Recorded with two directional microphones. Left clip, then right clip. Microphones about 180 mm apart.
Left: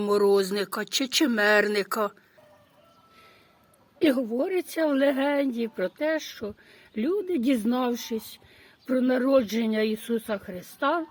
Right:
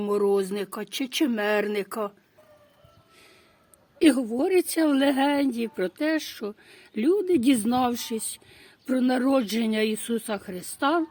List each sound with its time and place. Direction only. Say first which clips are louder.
0.0 s speech: left 2 dB; 15° right (ahead or behind)
3.9 s a woman's voice: right 2 dB; 30° right (ahead or behind)